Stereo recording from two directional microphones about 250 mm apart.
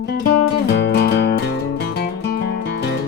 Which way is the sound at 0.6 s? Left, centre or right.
Left.